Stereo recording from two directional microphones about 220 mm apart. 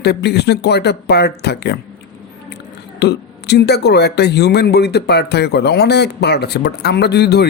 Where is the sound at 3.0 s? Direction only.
50° left (ahead or behind).